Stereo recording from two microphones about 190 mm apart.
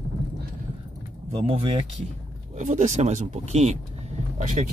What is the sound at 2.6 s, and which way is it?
Speech, 40° right (ahead or behind).